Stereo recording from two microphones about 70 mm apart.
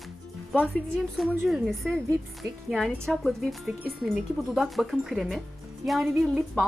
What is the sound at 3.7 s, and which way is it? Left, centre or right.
Speech, centre.